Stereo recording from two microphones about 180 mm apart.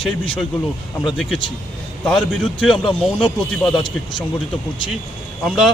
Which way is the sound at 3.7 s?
25° left (ahead or behind).